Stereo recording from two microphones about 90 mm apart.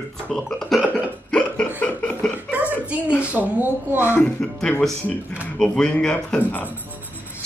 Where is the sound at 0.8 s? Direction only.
15° left (ahead or behind).